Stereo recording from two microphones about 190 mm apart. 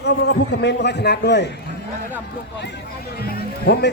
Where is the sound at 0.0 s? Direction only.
65° left (ahead or behind).